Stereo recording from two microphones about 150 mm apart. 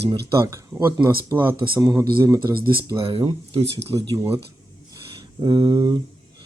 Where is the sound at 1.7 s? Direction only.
25° right (ahead or behind).